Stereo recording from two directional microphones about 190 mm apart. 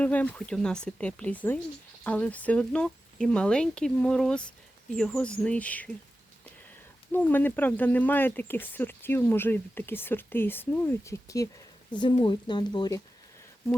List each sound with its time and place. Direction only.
0.0 s speech: 10° left (ahead or behind)
7.1 s speech: 10° left (ahead or behind)
11.9 s speech: 25° left (ahead or behind)